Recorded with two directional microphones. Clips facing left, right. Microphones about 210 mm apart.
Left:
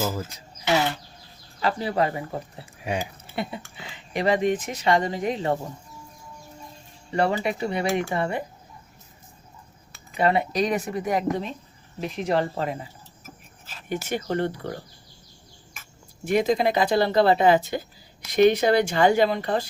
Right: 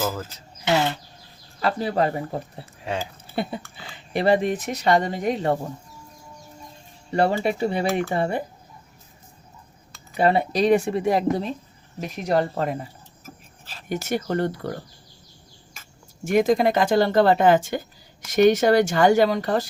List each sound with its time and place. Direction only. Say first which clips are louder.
0.0 s speech: right 1 dB; 10° left (ahead or behind)
1.6 s speech: right 2 dB; 40° right (ahead or behind)
2.8 s speech: even; 15° left (ahead or behind)
3.3 s speech: right 3 dB; 35° right (ahead or behind)
7.2 s speech: right 3 dB; 35° right (ahead or behind)
10.2 s speech: right 2 dB; 30° right (ahead or behind)
16.2 s speech: right 3 dB; 45° right (ahead or behind)